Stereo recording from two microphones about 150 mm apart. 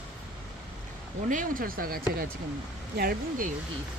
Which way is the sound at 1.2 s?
60° right (ahead or behind).